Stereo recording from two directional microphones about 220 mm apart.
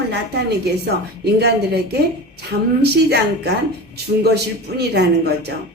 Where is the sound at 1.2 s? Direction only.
50° right (ahead or behind).